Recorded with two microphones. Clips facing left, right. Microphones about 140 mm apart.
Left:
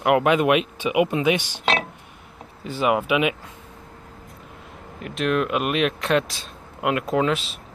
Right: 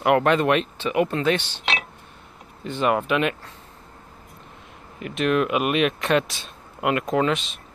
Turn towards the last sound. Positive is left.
turn(degrees=5)  # may be behind; listen again after turning